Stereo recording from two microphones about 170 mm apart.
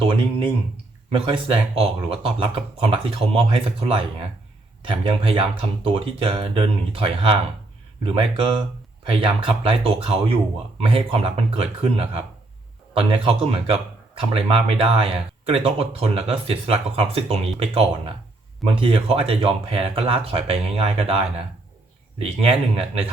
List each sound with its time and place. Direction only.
0.0 s speech: 35° right (ahead or behind)